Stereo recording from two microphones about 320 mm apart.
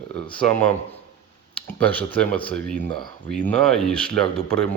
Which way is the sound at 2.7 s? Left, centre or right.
Centre.